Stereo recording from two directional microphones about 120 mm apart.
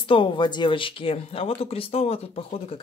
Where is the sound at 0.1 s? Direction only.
45° left (ahead or behind).